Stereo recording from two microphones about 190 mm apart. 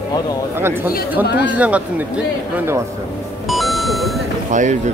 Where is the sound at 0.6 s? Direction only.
10° right (ahead or behind).